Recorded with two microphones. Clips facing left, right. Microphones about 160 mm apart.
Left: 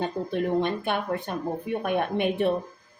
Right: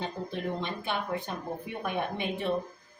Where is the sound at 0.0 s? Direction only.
55° left (ahead or behind).